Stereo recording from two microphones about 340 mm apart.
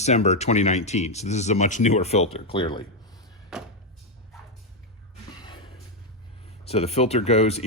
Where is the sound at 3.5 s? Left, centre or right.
Centre.